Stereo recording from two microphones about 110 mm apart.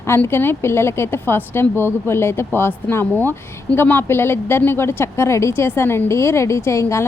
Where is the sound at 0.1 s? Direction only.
20° left (ahead or behind).